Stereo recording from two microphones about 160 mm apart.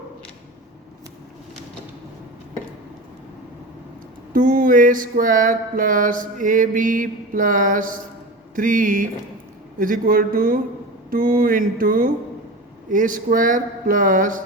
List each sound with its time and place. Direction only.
4.4 s mantra: 55° right (ahead or behind)